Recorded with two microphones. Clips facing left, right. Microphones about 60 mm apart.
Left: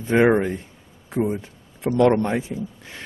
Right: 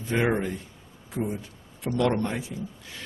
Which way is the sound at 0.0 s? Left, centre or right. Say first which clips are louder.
Left 8 dB; left.